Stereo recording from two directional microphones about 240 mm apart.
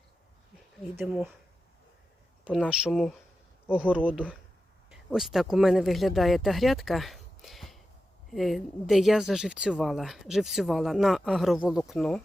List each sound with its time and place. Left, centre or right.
0.9 s speech: centre
2.4 s speech: centre